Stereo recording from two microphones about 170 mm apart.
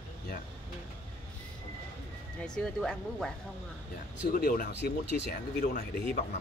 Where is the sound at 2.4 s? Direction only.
5° left (ahead or behind).